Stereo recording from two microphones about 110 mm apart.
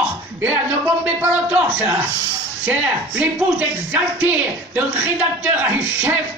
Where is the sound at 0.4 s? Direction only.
15° right (ahead or behind).